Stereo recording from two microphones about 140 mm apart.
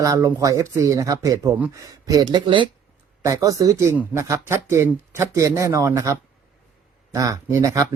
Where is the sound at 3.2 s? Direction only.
25° right (ahead or behind).